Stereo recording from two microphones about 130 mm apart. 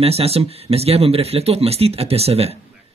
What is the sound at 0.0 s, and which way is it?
Speech, 50° right (ahead or behind).